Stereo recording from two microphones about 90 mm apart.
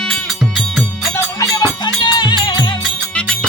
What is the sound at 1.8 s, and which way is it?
Music, 55° left (ahead or behind).